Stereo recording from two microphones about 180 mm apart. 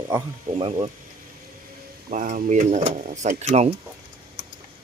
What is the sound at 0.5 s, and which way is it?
Speech, 35° right (ahead or behind).